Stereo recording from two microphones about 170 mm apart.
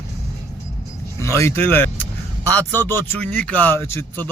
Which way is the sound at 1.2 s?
15° left (ahead or behind).